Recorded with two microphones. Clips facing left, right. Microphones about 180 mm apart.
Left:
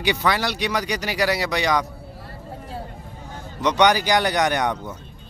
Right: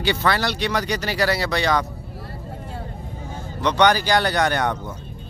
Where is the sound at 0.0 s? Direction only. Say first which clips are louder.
Right 1 dB; 15° left (ahead or behind).